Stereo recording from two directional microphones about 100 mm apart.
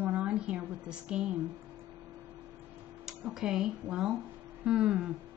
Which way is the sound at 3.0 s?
5° right (ahead or behind).